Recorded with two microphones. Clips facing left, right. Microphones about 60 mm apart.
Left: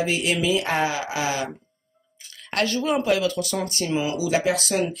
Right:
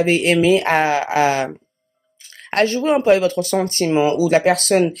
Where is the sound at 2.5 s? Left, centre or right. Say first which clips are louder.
Right 7 dB; right.